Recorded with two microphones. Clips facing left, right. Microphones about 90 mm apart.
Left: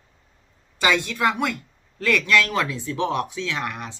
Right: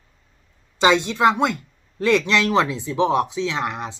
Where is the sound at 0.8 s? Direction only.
25° right (ahead or behind).